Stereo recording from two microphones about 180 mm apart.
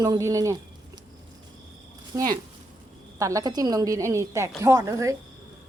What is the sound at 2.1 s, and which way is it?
A woman's voice, 20° right (ahead or behind).